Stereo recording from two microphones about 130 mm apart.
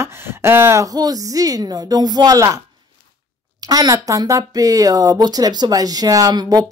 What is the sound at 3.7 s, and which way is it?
Speech, 30° right (ahead or behind).